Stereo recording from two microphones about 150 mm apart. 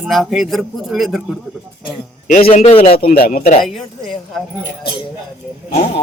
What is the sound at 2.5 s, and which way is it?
Speech, 40° left (ahead or behind).